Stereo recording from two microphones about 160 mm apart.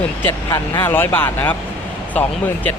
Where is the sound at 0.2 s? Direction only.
15° left (ahead or behind).